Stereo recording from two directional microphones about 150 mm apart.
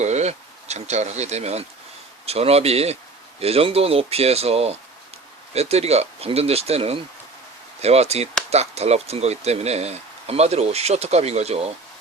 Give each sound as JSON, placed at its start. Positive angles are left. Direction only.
{"t": 0.0, "sound": "speech", "side_deg": -50}